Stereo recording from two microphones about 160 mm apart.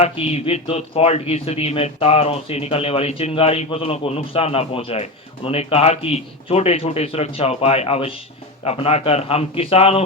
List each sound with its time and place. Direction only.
0.0 s speech: 40° left (ahead or behind)